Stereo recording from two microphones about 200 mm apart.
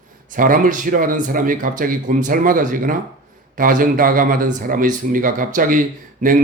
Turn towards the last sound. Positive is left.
turn(degrees=-45)  # may be behind; listen again after turning